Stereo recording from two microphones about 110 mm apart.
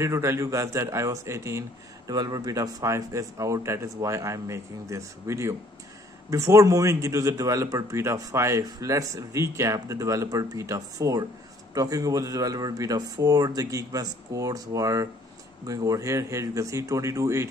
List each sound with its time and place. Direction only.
0.0 s a man's voice: 25° right (ahead or behind)